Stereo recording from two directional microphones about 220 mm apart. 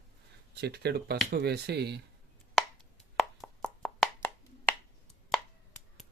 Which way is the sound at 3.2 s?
Centre (ahead or behind).